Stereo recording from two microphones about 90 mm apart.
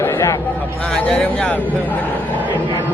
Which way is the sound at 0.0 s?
30° left (ahead or behind).